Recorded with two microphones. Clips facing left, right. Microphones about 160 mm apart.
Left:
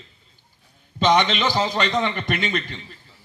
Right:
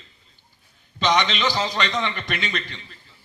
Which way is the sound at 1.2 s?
50° left (ahead or behind).